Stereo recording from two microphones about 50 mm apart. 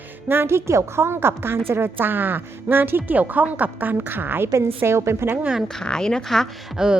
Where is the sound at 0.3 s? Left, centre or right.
Right.